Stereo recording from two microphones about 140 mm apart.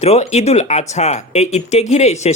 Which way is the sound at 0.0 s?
55° left (ahead or behind).